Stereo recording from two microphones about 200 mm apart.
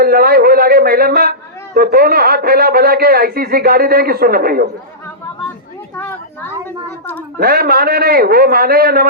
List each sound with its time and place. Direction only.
0.0 s a man's voice: 50° right (ahead or behind)
7.3 s a man's voice: 50° right (ahead or behind)